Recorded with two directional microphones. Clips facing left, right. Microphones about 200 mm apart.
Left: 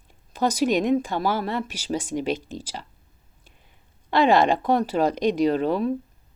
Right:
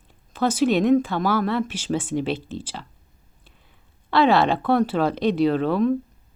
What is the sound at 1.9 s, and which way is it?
Speech, 45° left (ahead or behind).